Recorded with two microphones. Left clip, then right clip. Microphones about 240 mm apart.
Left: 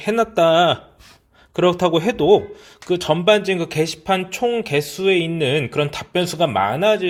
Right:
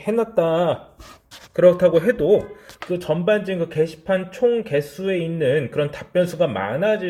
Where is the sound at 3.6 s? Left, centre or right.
Left.